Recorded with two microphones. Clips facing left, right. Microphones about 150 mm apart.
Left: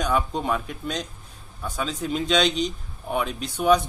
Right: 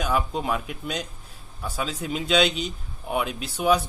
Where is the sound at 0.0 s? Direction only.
5° right (ahead or behind).